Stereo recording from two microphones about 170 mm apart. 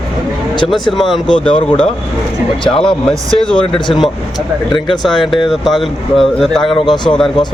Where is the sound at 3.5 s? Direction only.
30° left (ahead or behind).